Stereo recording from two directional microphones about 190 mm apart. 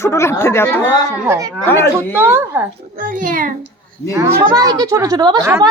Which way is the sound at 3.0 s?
45° right (ahead or behind).